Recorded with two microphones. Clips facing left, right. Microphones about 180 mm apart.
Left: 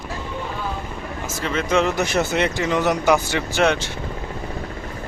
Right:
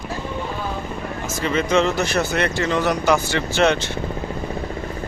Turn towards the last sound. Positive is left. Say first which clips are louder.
# right 1 dB
turn(degrees=15)  # may be behind; listen again after turning